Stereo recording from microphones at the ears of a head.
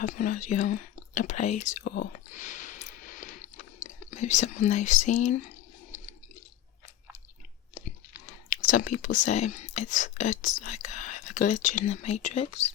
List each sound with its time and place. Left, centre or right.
0.0 s whispering: left
7.7 s speech: left